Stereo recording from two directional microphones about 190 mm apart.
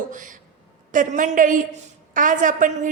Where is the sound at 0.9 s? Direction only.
40° right (ahead or behind).